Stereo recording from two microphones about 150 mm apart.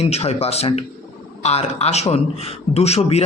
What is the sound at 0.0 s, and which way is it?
A man's voice, 45° left (ahead or behind).